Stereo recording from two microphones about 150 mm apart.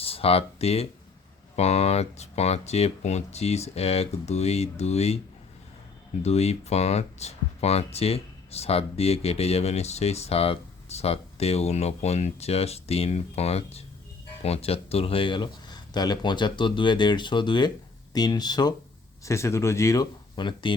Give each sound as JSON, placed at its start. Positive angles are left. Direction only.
{"t": 0.0, "sound": "speech", "side_deg": 40}
{"t": 6.2, "sound": "speech", "side_deg": 45}